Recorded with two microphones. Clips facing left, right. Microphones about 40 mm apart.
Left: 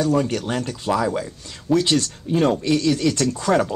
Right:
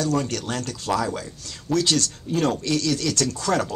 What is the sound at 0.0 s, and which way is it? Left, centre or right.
Speech, centre.